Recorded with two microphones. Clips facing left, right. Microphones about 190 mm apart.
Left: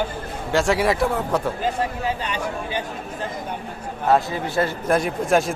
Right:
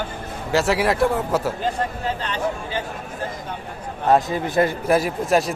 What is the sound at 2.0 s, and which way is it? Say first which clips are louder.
Speech: right 1 dB; 10° left (ahead or behind).